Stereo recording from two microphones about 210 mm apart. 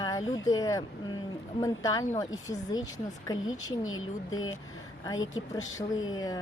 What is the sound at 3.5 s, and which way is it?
Speech, 70° left (ahead or behind).